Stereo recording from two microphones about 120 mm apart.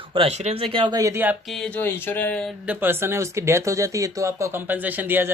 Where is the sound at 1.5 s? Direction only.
5° left (ahead or behind).